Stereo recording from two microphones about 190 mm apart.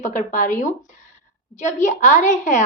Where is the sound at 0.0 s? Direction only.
40° left (ahead or behind).